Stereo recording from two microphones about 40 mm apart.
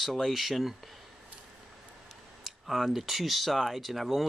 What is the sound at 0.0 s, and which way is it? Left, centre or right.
Speech, centre.